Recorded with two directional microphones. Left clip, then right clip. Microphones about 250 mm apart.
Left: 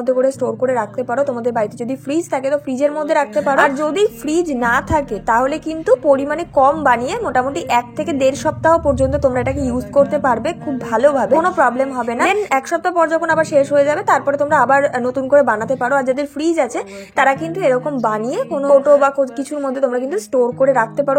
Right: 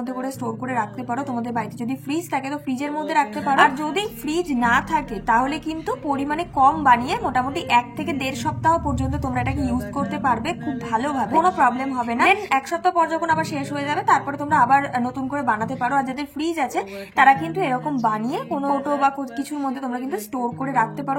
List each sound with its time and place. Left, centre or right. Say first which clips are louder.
0.0 s a woman's voice: left 13 dB; centre